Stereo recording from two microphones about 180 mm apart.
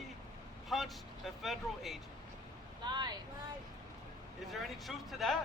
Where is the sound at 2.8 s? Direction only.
25° right (ahead or behind).